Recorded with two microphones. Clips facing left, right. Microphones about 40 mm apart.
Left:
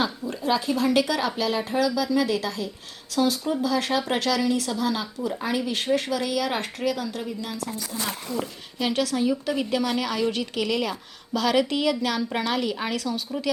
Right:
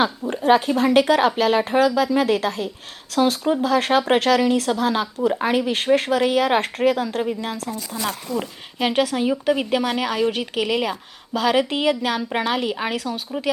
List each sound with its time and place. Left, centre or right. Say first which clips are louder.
0.3 s speech: right 10 dB; right
8.4 s a woman's voice: right 4 dB; right